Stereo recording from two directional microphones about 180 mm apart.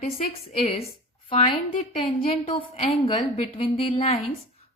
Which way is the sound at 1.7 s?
35° left (ahead or behind).